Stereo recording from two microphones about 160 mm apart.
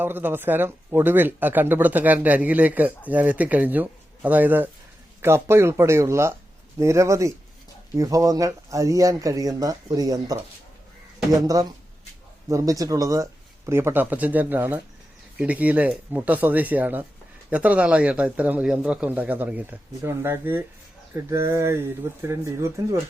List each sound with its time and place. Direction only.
0.0 s speech: 10° right (ahead or behind)
11.3 s speech: 20° right (ahead or behind)